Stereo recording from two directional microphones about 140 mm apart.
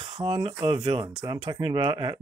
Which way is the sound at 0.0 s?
35° right (ahead or behind).